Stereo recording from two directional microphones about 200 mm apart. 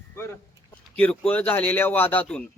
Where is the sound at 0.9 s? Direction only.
5° left (ahead or behind).